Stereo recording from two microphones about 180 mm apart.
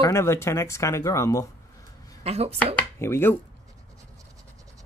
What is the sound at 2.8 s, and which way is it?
Chopping, 15° left (ahead or behind).